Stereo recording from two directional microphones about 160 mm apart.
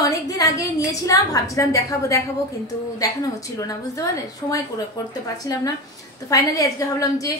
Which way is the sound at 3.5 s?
20° left (ahead or behind).